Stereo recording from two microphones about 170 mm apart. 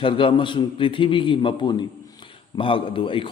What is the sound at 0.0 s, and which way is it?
A man's voice, 30° left (ahead or behind).